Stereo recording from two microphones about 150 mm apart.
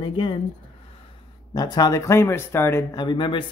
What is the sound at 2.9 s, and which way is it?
Speech, 30° left (ahead or behind).